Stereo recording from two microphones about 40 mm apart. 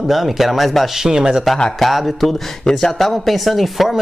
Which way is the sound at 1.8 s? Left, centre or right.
Centre.